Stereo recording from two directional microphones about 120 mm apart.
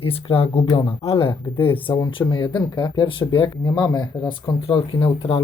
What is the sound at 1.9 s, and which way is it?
Speech, 40° left (ahead or behind).